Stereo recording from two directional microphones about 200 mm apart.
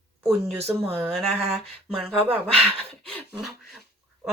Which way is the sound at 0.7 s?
5° right (ahead or behind).